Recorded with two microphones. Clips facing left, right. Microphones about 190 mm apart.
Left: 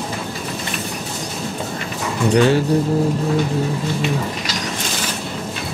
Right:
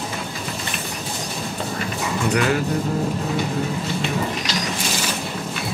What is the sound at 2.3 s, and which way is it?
Speech, 30° left (ahead or behind).